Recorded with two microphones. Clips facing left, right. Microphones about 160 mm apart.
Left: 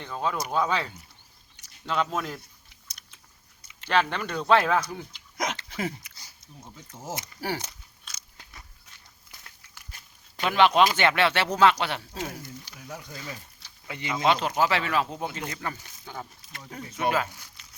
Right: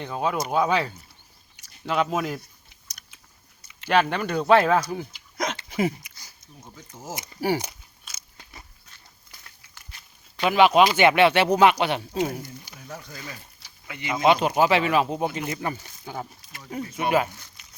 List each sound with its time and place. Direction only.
0.0 s speech: 15° right (ahead or behind)
3.8 s speech: 10° right (ahead or behind)
5.5 s a sound: 15° right (ahead or behind)
6.1 s a sound: 30° left (ahead or behind)
6.8 s biting: 10° right (ahead or behind)
10.4 s speech: 10° right (ahead or behind)
12.8 s speech: 10° left (ahead or behind)
13.8 s speech: 30° left (ahead or behind)
14.1 s speech: 15° right (ahead or behind)
17.6 s crumpling: 10° right (ahead or behind)